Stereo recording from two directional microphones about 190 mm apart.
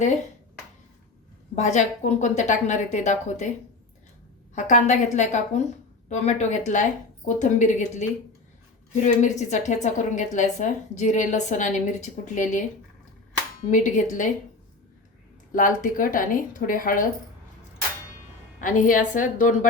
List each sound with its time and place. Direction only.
1.5 s a woman's voice: 40° left (ahead or behind)
4.5 s a woman's voice: 40° left (ahead or behind)
13.7 s a woman's voice: 40° left (ahead or behind)
15.5 s a woman's voice: 45° left (ahead or behind)
18.6 s a woman's voice: 45° left (ahead or behind)